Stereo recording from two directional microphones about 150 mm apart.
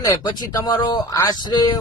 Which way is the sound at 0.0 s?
20° left (ahead or behind).